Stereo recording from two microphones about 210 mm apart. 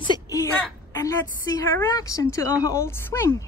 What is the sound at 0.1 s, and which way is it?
A woman's voice, 15° left (ahead or behind).